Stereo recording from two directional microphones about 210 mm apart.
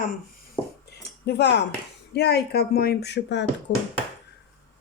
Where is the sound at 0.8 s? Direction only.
50° left (ahead or behind).